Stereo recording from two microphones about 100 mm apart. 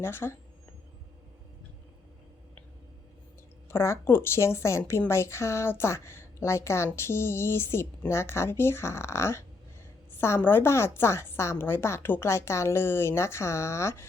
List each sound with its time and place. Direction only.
0.0 s a woman's voice: 25° left (ahead or behind)
3.7 s a woman's voice: 25° left (ahead or behind)